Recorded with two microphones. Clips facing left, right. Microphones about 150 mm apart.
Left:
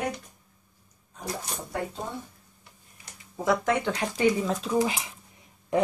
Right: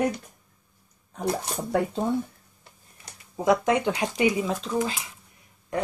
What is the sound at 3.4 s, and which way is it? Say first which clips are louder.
Speech: right 3 dB; 20° right (ahead or behind).